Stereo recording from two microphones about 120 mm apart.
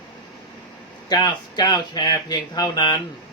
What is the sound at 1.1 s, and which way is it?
Speech, 35° left (ahead or behind).